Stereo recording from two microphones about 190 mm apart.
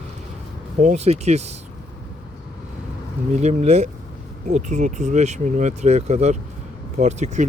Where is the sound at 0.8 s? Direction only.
40° right (ahead or behind).